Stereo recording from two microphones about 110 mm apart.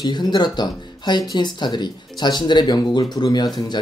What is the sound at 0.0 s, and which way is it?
Speech, 40° left (ahead or behind).